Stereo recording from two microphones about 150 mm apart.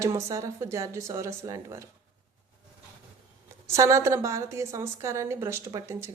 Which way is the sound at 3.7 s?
20° right (ahead or behind).